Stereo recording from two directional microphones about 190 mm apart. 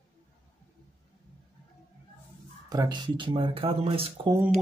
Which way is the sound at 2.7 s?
20° right (ahead or behind).